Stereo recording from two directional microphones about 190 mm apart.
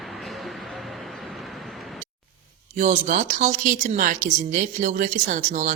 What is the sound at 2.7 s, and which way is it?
Speech, 40° right (ahead or behind).